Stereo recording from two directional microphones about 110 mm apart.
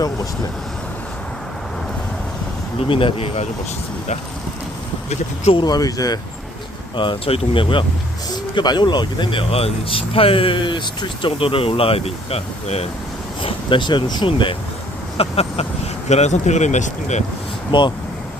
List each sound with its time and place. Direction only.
2.7 s speech: 55° left (ahead or behind)
5.5 s speech: 40° left (ahead or behind)
6.9 s speech: 50° left (ahead or behind); by 12.9 s 70° left (ahead or behind)
13.4 s speech: 50° left (ahead or behind)
15.2 s speech: 65° left (ahead or behind)
16.0 s speech: 90° left
17.7 s speech: 45° left (ahead or behind)